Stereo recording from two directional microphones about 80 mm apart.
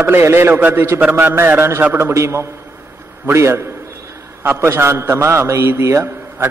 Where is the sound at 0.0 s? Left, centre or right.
Right.